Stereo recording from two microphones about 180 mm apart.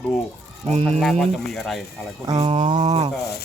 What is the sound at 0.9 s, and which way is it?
Speech, 5° left (ahead or behind).